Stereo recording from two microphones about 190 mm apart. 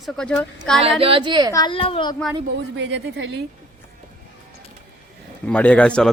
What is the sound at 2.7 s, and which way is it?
Speech, 70° right (ahead or behind).